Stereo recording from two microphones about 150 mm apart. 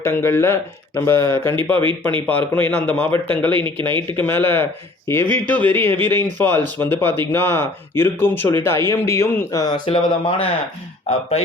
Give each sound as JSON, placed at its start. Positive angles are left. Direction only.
{"t": 0.0, "sound": "speech", "side_deg": 15}
{"t": 1.8, "sound": "speech", "side_deg": -30}
{"t": 2.1, "sound": "speech", "side_deg": 10}
{"t": 3.5, "sound": "speech", "side_deg": -35}
{"t": 4.2, "sound": "speech", "side_deg": 15}
{"t": 9.8, "sound": "speech", "side_deg": 35}